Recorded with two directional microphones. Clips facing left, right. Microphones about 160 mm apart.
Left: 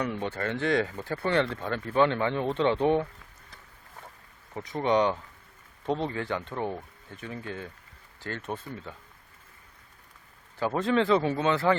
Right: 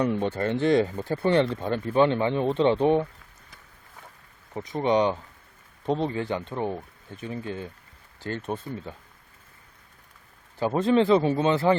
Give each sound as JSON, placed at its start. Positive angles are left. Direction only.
{"t": 0.0, "sound": "speech", "side_deg": -25}
{"t": 4.5, "sound": "speech", "side_deg": -20}
{"t": 10.6, "sound": "speech", "side_deg": -20}